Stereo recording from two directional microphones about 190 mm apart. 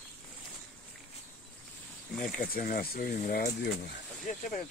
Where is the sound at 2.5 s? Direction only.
50° left (ahead or behind).